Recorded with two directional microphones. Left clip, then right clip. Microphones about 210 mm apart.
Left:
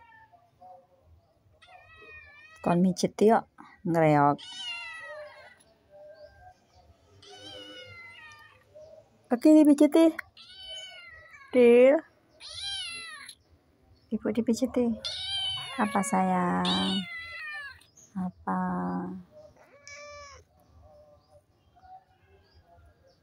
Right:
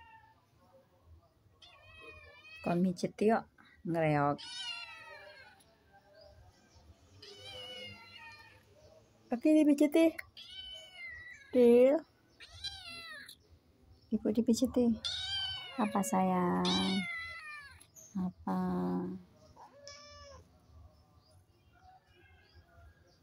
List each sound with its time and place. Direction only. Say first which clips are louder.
2.6 s speech: left 8 dB; 20° left (ahead or behind)
4.9 s cat: left 9 dB; 15° right (ahead or behind)
9.3 s speech: left 8 dB; 25° left (ahead or behind)
11.0 s cat: right 1 dB; 15° right (ahead or behind)
11.5 s speech: left 6 dB; 10° left (ahead or behind)
12.4 s cat: left 10 dB; 25° right (ahead or behind)
14.0 s a sound: left 3 dB; centre (ahead or behind)
15.0 s cat: left 4 dB; 25° right (ahead or behind)
15.7 s speech: left 5 dB; 10° left (ahead or behind)
17.0 s cat: left 3 dB; 15° right (ahead or behind)
18.1 s a sound: left 6 dB; 5° left (ahead or behind)
19.8 s cat: left 10 dB; 30° left (ahead or behind)